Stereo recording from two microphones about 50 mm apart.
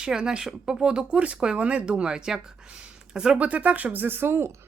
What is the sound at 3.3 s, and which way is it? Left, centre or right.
Speech, right.